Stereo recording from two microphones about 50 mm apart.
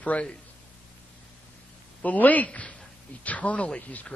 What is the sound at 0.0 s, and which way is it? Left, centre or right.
Speech, left.